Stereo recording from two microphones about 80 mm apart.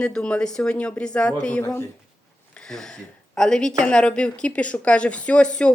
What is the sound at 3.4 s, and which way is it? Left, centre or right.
A woman's voice, centre.